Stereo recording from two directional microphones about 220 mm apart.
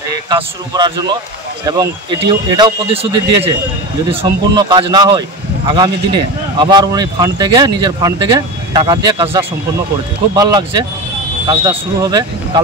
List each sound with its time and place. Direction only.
0.3 s speech: 20° right (ahead or behind)